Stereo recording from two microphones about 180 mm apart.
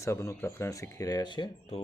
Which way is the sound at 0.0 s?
15° left (ahead or behind).